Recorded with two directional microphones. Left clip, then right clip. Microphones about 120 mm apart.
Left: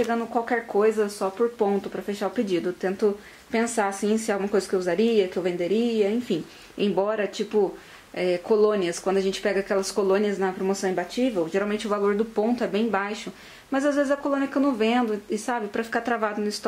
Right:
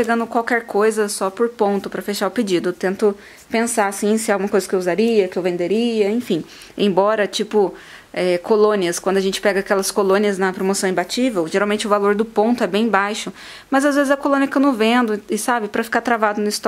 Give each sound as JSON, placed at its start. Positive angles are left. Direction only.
{"t": 0.0, "sound": "a woman's voice", "side_deg": -45}